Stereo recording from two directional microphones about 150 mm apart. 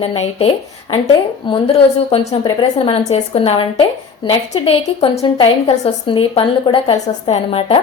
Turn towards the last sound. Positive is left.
turn(degrees=40)  # may be behind; listen again after turning